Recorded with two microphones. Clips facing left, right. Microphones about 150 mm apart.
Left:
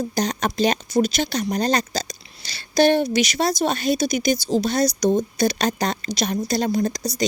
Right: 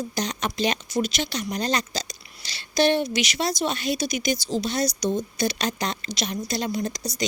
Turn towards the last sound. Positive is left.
turn(degrees=35)  # may be behind; listen again after turning